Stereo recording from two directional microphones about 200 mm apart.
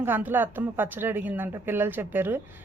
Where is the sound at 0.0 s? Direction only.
10° right (ahead or behind).